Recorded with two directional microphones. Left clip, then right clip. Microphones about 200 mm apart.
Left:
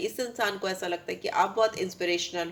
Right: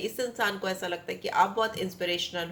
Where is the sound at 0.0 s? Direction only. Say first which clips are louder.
Even; 35° left (ahead or behind).